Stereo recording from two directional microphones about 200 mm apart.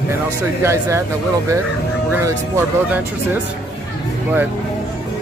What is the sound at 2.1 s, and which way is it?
Speech, 10° right (ahead or behind).